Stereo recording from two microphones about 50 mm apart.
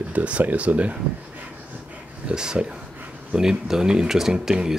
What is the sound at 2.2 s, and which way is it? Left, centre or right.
Speech, centre.